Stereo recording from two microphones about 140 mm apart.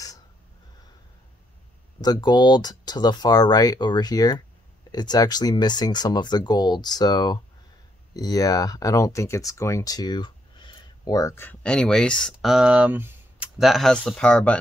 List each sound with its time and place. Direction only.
2.0 s speech: 30° left (ahead or behind); by 13.5 s 10° right (ahead or behind)
13.6 s speech: centre (ahead or behind)